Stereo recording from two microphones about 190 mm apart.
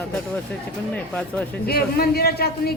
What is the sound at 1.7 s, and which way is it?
A man's voice, 55° left (ahead or behind).